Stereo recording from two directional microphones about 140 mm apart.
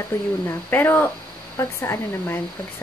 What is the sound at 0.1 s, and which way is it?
Speech, 15° left (ahead or behind).